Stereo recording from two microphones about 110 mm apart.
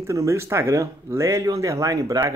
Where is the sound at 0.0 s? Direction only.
30° right (ahead or behind).